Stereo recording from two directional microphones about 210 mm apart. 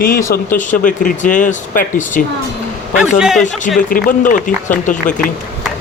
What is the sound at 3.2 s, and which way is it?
Speech, centre (ahead or behind).